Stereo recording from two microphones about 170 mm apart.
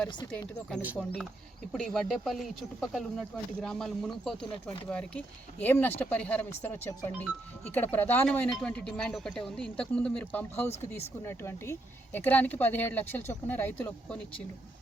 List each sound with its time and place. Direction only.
0.3 s speech: 5° left (ahead or behind)
0.8 s speech: 10° right (ahead or behind)
1.7 s speech: centre (ahead or behind)
7.7 s speech: 10° left (ahead or behind)
10.5 s speech: 40° left (ahead or behind)
11.3 s speech: 15° left (ahead or behind)